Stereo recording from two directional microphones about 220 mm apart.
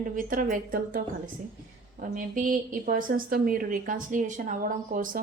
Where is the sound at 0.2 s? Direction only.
40° right (ahead or behind).